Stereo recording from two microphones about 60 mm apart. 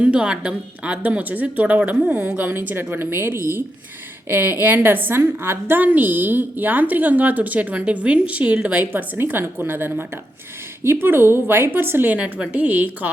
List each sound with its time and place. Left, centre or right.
0.0 s a woman's voice: centre; by 5.8 s right
5.8 s a woman's voice: right
8.8 s a woman's voice: right
12.1 s a woman's voice: right